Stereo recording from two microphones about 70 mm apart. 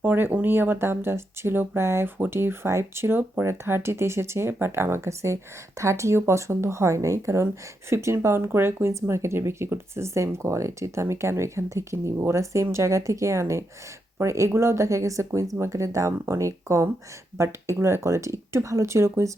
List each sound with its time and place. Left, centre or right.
0.0 s speech: right